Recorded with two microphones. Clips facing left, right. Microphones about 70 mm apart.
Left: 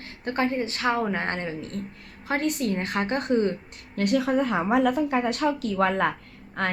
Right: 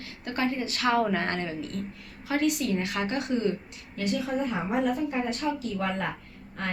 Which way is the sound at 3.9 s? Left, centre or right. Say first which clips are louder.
Left 6 dB; left.